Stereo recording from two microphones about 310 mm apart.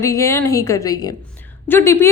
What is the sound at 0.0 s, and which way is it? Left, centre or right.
A woman's voice, centre.